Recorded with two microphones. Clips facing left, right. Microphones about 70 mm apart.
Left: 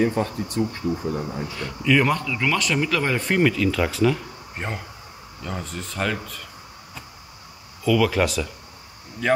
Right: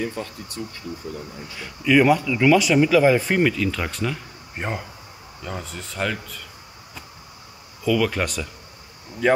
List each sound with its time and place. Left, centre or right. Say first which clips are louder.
0.6 s speech: left 9 dB; left
1.6 s speech: right 3 dB; centre
7.8 s speech: left 2 dB; centre